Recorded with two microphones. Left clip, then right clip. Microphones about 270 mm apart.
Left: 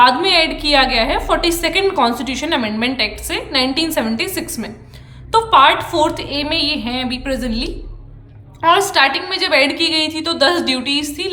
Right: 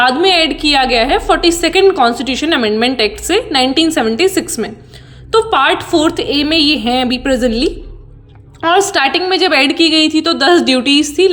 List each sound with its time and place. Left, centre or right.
0.0 s a woman's voice: centre